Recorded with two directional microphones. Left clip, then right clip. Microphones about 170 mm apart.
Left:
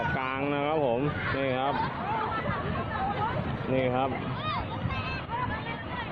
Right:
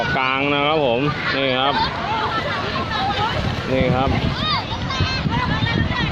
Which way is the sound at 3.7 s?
Centre (ahead or behind).